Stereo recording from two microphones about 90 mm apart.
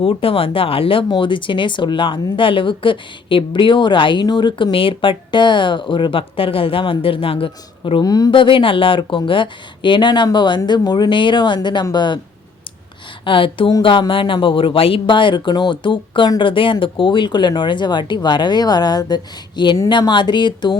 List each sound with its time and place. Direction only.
0.0 s speech: 90° left
1.1 s speech: 65° left (ahead or behind); by 8.0 s 85° left
8.0 s speech: 45° left (ahead or behind)
8.3 s speech: 70° left (ahead or behind)
13.2 s speech: 70° left (ahead or behind); by 20.7 s 55° left (ahead or behind)